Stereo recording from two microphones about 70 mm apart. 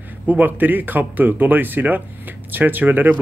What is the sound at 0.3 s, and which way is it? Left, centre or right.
Speech, right.